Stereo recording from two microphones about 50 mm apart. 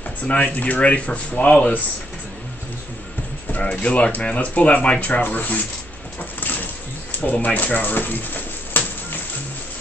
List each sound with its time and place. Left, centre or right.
0.3 s speech: left
3.5 s speech: left
7.4 s speech: left
8.8 s music: left